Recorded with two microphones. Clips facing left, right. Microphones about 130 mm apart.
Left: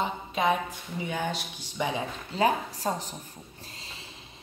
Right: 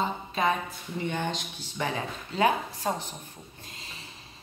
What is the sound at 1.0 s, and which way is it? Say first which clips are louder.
Speech: even; 5° left (ahead or behind).